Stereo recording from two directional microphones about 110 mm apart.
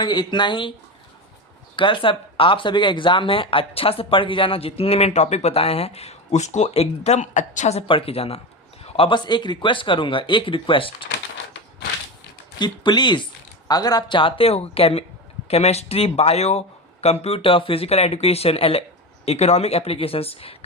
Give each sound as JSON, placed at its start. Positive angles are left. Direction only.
{"t": 0.0, "sound": "speech", "side_deg": 45}
{"t": 1.7, "sound": "speech", "side_deg": 50}
{"t": 7.9, "sound": "speech", "side_deg": 55}
{"t": 12.5, "sound": "speech", "side_deg": 40}
{"t": 14.2, "sound": "speech", "side_deg": 55}
{"t": 15.4, "sound": "speech", "side_deg": 75}